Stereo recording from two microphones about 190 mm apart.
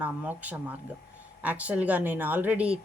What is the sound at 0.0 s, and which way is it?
A woman's voice, 10° right (ahead or behind).